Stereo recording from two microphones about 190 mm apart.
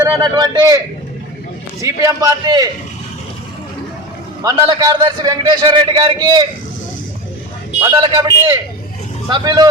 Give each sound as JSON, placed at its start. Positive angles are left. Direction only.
{"t": 0.0, "sound": "a man's voice", "side_deg": -20}
{"t": 1.8, "sound": "a man's voice", "side_deg": -15}
{"t": 4.4, "sound": "a man's voice", "side_deg": -20}
{"t": 7.8, "sound": "a man's voice", "side_deg": -25}